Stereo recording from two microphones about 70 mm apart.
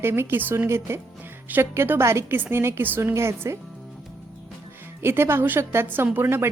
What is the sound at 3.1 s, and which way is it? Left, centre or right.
Speech, right.